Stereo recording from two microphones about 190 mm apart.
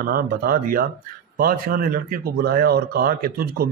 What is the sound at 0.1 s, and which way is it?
Speech, 50° right (ahead or behind).